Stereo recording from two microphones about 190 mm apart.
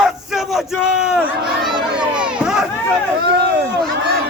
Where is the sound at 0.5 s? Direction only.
5° right (ahead or behind).